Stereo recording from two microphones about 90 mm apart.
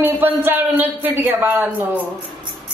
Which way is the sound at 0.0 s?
20° right (ahead or behind).